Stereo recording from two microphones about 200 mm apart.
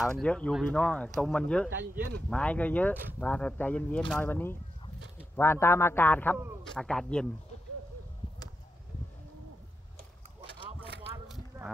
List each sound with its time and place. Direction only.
0.0 s speech: 5° left (ahead or behind)